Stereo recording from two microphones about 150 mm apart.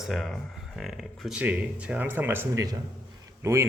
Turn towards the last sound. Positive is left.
turn(degrees=-15)  # may be behind; listen again after turning